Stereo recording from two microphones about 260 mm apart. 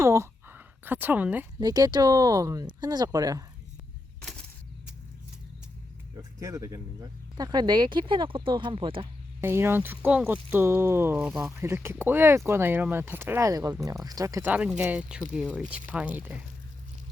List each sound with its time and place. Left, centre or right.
0.0 s speech: centre
4.2 s a sound: centre
6.1 s speech: centre
9.4 s speech: centre